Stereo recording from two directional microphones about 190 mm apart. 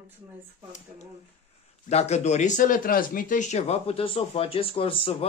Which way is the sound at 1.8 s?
35° left (ahead or behind).